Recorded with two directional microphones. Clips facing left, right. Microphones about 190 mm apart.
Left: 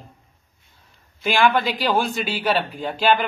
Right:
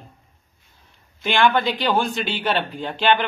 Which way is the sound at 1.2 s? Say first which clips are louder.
Even; 5° left (ahead or behind).